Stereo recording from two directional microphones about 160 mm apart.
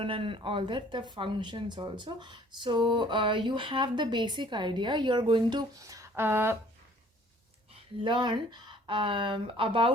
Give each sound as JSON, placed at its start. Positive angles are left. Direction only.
{"t": 0.0, "sound": "speech", "side_deg": -35}
{"t": 8.0, "sound": "speech", "side_deg": -30}